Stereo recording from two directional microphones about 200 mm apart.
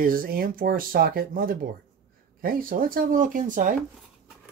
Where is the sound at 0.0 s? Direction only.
45° right (ahead or behind).